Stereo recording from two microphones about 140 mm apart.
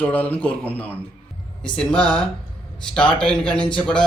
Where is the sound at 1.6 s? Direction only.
5° left (ahead or behind).